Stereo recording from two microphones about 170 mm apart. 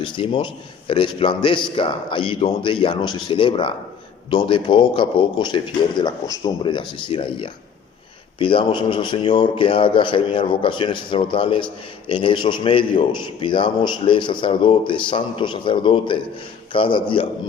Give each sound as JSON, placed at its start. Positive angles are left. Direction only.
{"t": 0.0, "sound": "a man's voice", "side_deg": 30}